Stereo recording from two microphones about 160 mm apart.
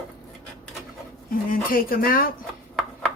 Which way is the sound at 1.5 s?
65° left (ahead or behind).